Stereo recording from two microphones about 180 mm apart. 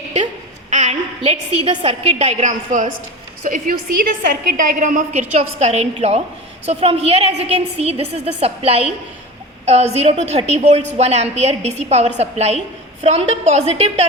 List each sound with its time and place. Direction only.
0.7 s a woman's voice: 40° right (ahead or behind)